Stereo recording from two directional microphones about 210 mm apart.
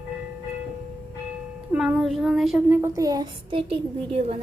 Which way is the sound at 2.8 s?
15° right (ahead or behind).